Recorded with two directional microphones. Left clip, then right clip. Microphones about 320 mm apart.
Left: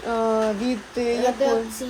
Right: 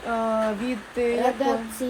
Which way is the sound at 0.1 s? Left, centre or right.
Centre.